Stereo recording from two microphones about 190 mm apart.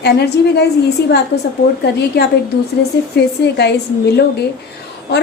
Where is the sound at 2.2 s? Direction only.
60° left (ahead or behind).